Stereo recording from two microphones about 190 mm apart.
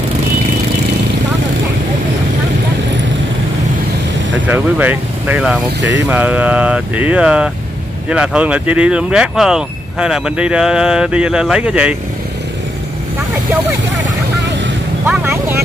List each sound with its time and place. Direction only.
4.5 s speech: 10° right (ahead or behind)
5.8 s speech: 70° right (ahead or behind)
6.0 s speech: 10° right (ahead or behind)
15.0 s speech: 10° right (ahead or behind)